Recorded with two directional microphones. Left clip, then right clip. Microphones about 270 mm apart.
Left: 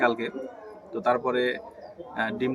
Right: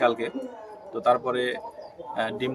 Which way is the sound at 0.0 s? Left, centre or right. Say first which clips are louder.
Right 1 dB; centre.